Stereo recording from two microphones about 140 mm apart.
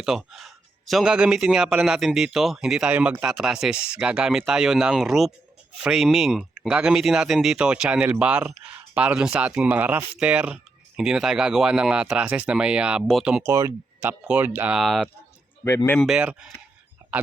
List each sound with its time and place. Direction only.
0.0 s speech: 5° right (ahead or behind)
13.5 s speech: 20° right (ahead or behind); by 15.1 s centre (ahead or behind)
15.6 s speech: 20° left (ahead or behind)
16.0 s speech: 5° right (ahead or behind)